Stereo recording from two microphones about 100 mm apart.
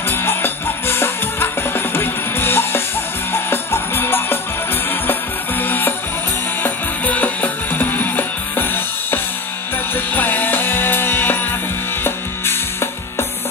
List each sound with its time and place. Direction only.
0.1 s music: 20° left (ahead or behind)
5.6 s music: 20° left (ahead or behind)